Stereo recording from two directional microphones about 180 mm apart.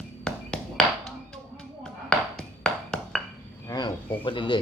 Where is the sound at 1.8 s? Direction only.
5° left (ahead or behind).